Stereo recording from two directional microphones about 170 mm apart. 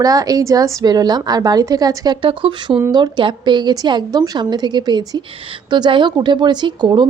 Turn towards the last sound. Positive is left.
turn(degrees=-25)  # may be behind; listen again after turning